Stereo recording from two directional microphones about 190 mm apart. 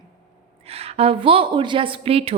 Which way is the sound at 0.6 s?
30° right (ahead or behind).